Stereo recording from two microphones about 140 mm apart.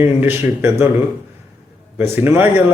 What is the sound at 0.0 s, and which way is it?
Speech, 15° right (ahead or behind).